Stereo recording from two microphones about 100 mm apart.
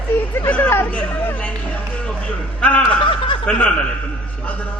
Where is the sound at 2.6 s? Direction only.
15° left (ahead or behind).